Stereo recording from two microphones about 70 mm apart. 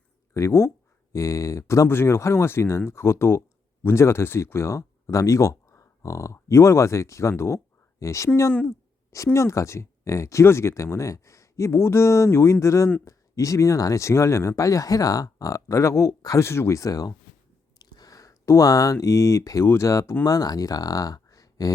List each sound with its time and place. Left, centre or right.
0.3 s speech: left
17.7 s a sound: left
19.6 s speech: left
20.2 s speech: left